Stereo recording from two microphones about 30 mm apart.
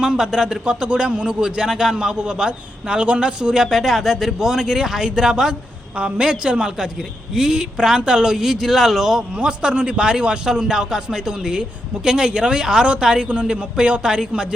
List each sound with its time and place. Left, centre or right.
0.0 s a man's voice: right
0.6 s a man's voice: right
2.9 s a man's voice: right
3.5 s a man's voice: centre
6.0 s a man's voice: right
7.3 s a man's voice: right
8.4 s a man's voice: centre
9.4 s a man's voice: right
10.5 s a man's voice: centre